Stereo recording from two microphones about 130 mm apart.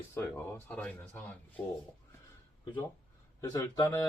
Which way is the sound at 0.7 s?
10° left (ahead or behind).